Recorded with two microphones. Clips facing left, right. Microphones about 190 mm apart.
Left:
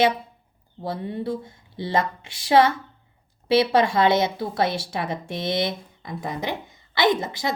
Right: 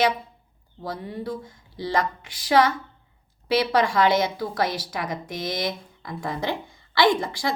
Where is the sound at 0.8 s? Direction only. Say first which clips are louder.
Left 3 dB; 25° left (ahead or behind).